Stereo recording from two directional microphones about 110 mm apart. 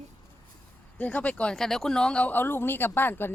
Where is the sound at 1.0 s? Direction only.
10° left (ahead or behind).